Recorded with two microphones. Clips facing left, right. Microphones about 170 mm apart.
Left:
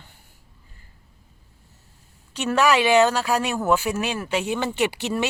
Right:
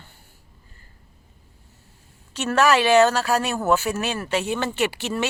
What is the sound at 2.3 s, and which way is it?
Speech, 15° left (ahead or behind).